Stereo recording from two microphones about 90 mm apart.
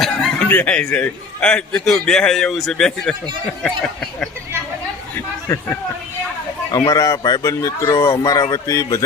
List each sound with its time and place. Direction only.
0.0 s snicker: 5° left (ahead or behind)
0.4 s speech: 20° left (ahead or behind)
0.7 s a man's voice: 10° left (ahead or behind)
6.7 s a man's voice: 40° left (ahead or behind)
7.4 s a man's voice: 35° left (ahead or behind)